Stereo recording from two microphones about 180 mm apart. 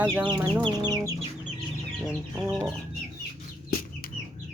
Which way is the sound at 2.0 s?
Centre (ahead or behind).